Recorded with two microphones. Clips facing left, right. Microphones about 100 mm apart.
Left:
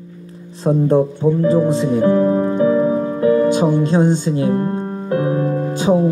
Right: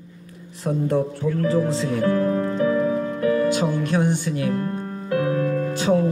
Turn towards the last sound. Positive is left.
turn(degrees=25)  # may be behind; listen again after turning